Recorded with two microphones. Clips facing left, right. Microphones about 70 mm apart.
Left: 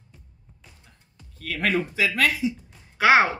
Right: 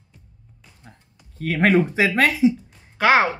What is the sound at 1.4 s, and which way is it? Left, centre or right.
Speech, right.